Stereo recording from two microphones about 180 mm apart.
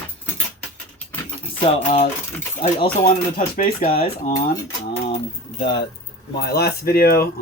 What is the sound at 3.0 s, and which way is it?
Speech, 50° left (ahead or behind).